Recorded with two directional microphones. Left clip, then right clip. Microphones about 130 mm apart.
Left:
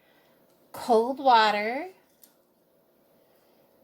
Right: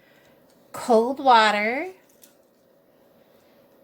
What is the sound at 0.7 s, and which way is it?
A woman's voice, 25° left (ahead or behind).